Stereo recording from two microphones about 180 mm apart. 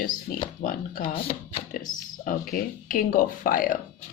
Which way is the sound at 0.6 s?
50° left (ahead or behind).